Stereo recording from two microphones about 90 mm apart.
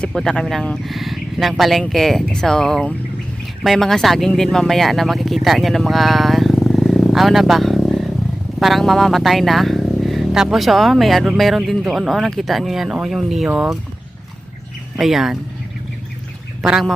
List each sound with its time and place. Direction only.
0.0 s speech: 5° left (ahead or behind)
14.9 s speech: 5° right (ahead or behind)
16.6 s speech: centre (ahead or behind)